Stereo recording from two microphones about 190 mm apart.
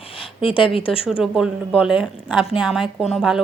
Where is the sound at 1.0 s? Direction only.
5° right (ahead or behind).